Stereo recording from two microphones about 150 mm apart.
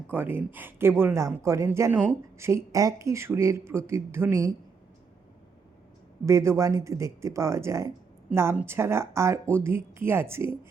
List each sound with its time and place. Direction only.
0.1 s speech: 15° right (ahead or behind)
6.2 s speech: 20° right (ahead or behind)